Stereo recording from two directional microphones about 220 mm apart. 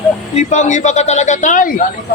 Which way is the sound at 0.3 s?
35° left (ahead or behind).